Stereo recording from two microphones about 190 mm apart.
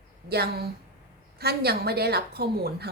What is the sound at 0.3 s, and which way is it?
A woman's voice, 55° right (ahead or behind).